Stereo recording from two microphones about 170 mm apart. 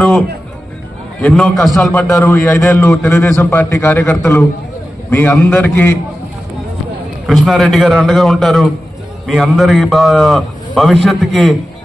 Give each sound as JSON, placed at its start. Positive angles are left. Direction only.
{"t": 1.2, "sound": "a man's voice", "side_deg": 5}
{"t": 7.2, "sound": "a man's voice", "side_deg": 0}